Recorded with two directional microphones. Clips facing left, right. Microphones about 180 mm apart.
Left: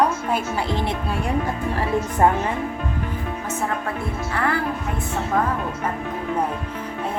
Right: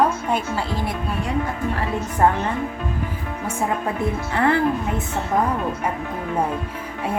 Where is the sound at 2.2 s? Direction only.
15° left (ahead or behind).